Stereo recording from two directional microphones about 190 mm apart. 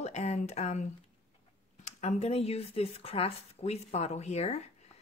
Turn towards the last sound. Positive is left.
turn(degrees=35)  # may be behind; listen again after turning